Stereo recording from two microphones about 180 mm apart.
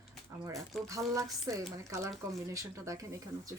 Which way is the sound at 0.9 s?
20° right (ahead or behind).